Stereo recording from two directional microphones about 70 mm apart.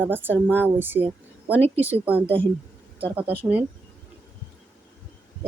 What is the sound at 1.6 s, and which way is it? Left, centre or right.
Speech, left.